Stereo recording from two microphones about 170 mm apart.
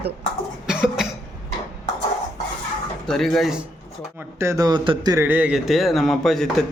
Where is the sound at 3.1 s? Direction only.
Centre (ahead or behind).